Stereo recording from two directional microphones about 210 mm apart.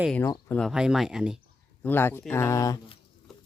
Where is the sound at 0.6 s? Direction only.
5° right (ahead or behind).